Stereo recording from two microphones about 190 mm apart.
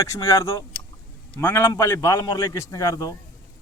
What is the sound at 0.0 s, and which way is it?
Speech, 15° left (ahead or behind).